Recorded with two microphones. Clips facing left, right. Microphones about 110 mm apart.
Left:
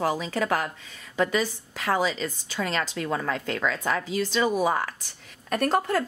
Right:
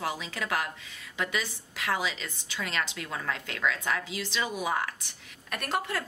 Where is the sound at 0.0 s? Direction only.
40° left (ahead or behind).